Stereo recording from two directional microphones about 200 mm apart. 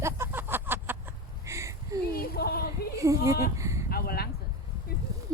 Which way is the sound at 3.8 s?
50° left (ahead or behind).